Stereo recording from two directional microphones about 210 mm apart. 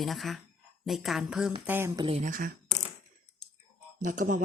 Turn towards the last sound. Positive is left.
turn(degrees=-40)  # may be behind; listen again after turning